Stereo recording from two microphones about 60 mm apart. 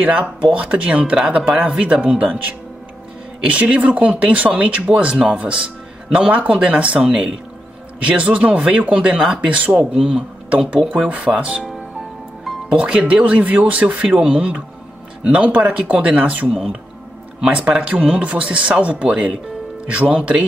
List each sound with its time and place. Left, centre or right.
0.0 s speech: right
7.1 s speech: centre
8.1 s speech: right
10.9 s speech: right
12.6 s speech: centre
17.5 s speech: centre